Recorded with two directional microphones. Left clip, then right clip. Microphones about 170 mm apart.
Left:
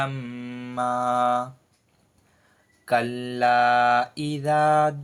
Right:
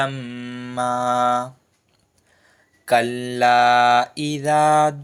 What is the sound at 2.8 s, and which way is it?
Mantra, 25° right (ahead or behind).